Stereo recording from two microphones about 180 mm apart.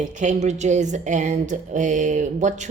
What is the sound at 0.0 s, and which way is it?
Speech, 40° right (ahead or behind).